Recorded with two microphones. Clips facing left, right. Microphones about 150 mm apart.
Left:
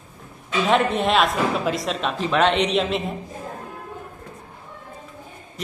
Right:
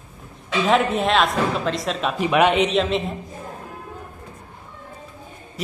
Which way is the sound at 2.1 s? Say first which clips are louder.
Right 2 dB; 15° right (ahead or behind).